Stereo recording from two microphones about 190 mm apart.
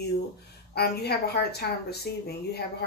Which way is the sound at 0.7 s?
55° left (ahead or behind).